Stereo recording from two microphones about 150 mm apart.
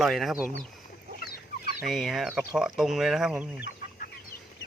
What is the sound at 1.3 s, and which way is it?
Chicken, 90° left.